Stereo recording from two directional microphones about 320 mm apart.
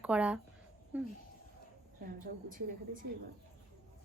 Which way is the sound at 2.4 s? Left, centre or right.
Right.